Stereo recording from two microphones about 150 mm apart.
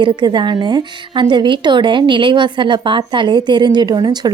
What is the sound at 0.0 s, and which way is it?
A woman's voice, 35° right (ahead or behind).